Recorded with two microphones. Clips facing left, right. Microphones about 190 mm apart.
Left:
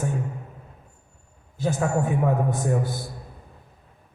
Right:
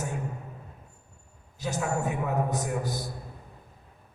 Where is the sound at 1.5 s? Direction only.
50° left (ahead or behind).